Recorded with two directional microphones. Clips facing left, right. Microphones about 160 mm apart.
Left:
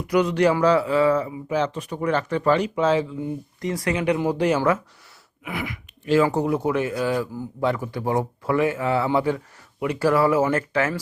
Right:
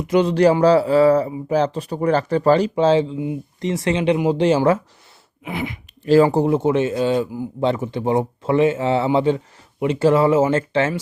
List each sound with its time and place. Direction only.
0.0 s a man's voice: 25° right (ahead or behind)